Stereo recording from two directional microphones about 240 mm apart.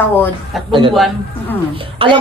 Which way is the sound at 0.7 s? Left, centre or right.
Right.